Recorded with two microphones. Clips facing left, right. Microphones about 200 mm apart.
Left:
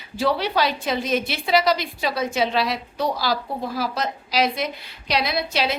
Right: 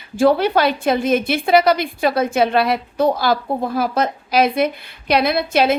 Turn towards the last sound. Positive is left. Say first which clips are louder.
# right 8 dB
turn(degrees=-55)  # may be behind; listen again after turning